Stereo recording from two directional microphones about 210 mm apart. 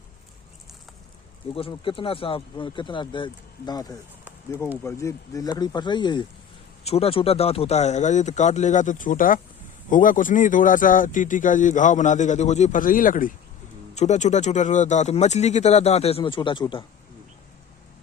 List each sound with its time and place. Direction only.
1.5 s speech: 25° left (ahead or behind)